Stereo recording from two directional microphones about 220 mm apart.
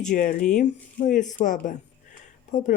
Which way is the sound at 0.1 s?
35° left (ahead or behind).